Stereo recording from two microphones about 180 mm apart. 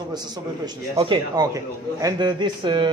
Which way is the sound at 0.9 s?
25° right (ahead or behind).